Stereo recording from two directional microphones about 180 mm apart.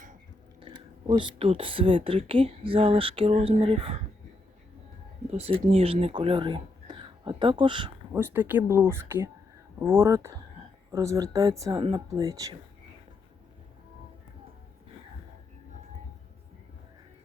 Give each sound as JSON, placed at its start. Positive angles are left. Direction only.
{"t": 0.6, "sound": "speech", "side_deg": -25}
{"t": 5.3, "sound": "speech", "side_deg": -35}
{"t": 8.1, "sound": "speech", "side_deg": -10}